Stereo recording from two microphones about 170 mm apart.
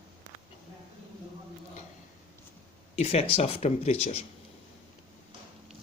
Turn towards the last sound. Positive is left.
turn(degrees=40)  # may be behind; listen again after turning